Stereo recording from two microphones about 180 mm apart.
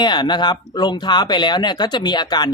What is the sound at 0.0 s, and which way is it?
Speech, 25° left (ahead or behind).